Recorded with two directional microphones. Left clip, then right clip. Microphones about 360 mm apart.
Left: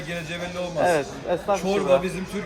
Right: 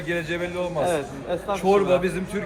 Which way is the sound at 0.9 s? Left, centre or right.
Left.